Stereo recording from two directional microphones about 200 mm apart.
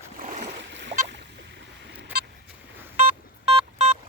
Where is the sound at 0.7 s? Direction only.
65° right (ahead or behind).